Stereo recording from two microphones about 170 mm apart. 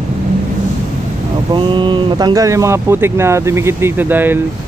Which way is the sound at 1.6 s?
30° right (ahead or behind).